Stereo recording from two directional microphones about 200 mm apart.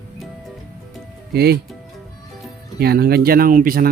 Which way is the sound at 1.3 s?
55° right (ahead or behind).